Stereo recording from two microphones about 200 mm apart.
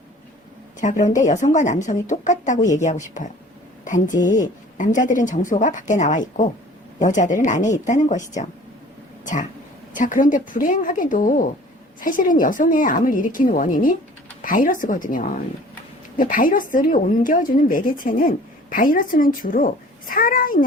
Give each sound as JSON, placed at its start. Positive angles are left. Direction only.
{"t": 0.8, "sound": "a woman's voice", "side_deg": 40}
{"t": 4.1, "sound": "a woman's voice", "side_deg": 15}
{"t": 4.8, "sound": "speech", "side_deg": 40}
{"t": 9.2, "sound": "a woman's voice", "side_deg": 40}